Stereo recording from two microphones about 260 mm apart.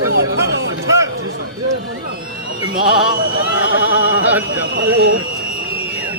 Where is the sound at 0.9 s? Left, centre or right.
Centre.